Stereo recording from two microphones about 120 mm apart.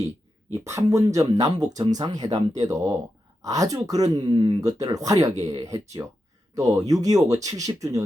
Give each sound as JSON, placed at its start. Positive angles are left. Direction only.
{"t": 0.5, "sound": "speech", "side_deg": -25}
{"t": 4.6, "sound": "speech", "side_deg": -30}